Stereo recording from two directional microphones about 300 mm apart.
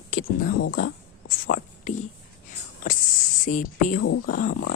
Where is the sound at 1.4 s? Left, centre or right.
Left.